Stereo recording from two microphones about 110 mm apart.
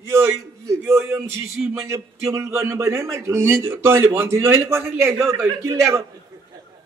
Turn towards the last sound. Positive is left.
turn(degrees=-30)  # may be behind; listen again after turning